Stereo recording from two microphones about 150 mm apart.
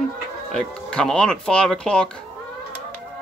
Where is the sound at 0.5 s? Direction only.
5° left (ahead or behind).